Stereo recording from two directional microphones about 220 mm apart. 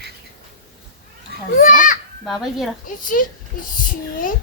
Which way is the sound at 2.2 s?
Centre (ahead or behind).